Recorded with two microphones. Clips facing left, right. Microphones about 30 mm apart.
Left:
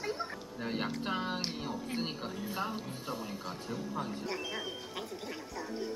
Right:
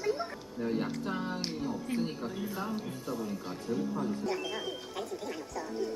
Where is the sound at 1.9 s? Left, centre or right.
Centre.